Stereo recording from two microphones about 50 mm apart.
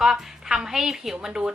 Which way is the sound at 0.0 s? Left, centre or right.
Centre.